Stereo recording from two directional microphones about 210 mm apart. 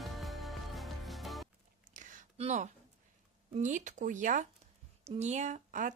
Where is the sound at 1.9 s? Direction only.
35° right (ahead or behind).